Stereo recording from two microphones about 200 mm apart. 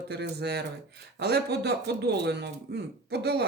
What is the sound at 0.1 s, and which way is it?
Speech, 55° right (ahead or behind).